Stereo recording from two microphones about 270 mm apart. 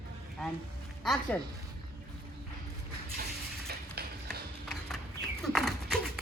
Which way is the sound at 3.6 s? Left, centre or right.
Right.